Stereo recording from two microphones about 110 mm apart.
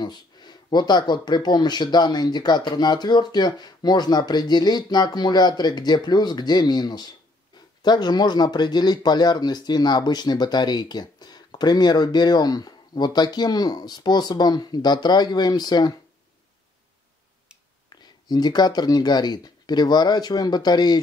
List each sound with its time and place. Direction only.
0.0 s speech: 40° left (ahead or behind)
17.8 s speech: 40° left (ahead or behind)